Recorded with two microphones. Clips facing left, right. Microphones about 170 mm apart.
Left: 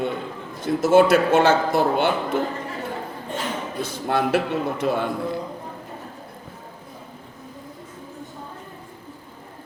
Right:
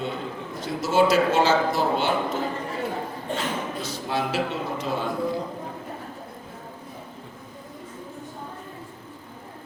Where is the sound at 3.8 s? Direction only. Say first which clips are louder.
Left 9 dB; 55° left (ahead or behind).